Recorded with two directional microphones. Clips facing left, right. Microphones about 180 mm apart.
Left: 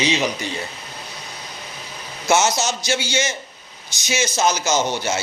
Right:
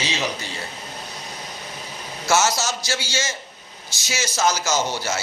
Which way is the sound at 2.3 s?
20° left (ahead or behind).